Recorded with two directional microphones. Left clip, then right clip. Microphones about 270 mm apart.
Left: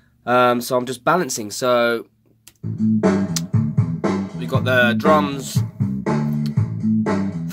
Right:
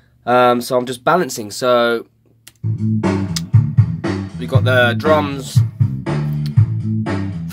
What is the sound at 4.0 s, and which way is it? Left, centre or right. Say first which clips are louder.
Music: left 2 dB; centre.